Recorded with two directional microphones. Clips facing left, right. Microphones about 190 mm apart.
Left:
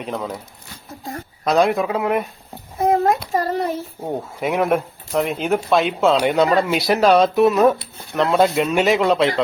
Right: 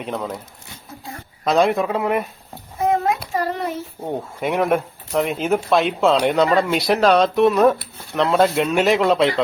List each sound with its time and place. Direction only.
0.0 s speech: centre (ahead or behind)
1.5 s speech: centre (ahead or behind)
2.8 s child singing: 40° left (ahead or behind)
4.0 s speech: 5° left (ahead or behind)